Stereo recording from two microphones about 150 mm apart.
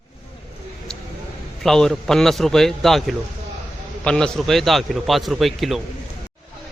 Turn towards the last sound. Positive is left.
turn(degrees=0)  # may be behind; listen again after turning